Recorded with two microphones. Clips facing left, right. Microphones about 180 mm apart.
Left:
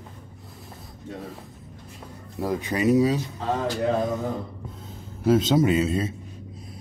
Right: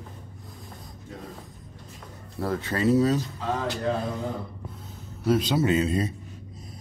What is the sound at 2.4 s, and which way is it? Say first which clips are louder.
Speech: left 2 dB; 15° left (ahead or behind).